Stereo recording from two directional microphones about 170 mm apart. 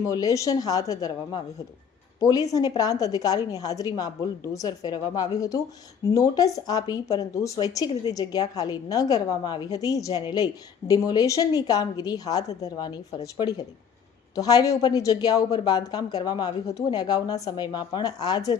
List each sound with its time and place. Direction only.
0.0 s speech: 20° left (ahead or behind)
14.3 s speech: 20° left (ahead or behind)